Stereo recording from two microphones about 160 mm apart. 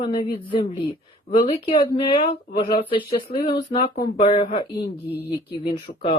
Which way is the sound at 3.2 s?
65° left (ahead or behind).